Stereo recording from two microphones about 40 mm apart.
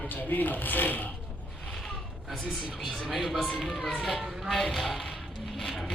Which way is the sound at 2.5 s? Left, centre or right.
Centre.